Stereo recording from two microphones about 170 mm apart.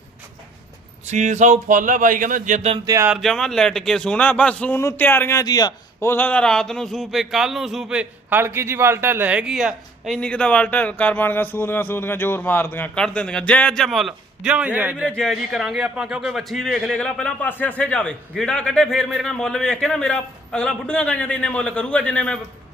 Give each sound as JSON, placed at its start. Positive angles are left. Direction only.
{"t": 1.0, "sound": "speech", "side_deg": -45}
{"t": 2.8, "sound": "speech", "side_deg": -20}
{"t": 3.1, "sound": "speech", "side_deg": 0}
{"t": 15.0, "sound": "speech", "side_deg": 5}